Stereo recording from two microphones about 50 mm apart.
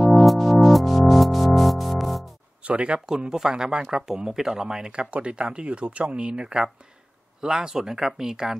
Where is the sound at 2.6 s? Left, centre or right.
Right.